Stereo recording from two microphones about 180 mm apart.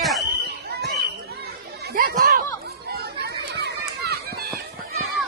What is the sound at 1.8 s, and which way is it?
Chatter, 60° right (ahead or behind).